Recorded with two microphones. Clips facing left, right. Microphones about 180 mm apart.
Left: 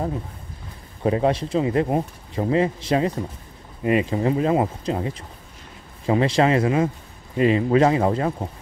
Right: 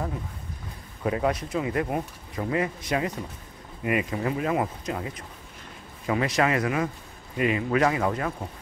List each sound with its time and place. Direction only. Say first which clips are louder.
1.0 s speech: left 5 dB; 30° left (ahead or behind)